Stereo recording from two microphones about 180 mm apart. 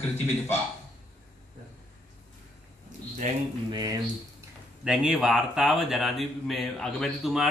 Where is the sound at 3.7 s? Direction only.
25° right (ahead or behind).